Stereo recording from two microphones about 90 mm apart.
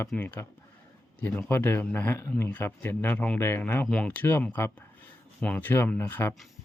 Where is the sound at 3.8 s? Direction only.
10° left (ahead or behind).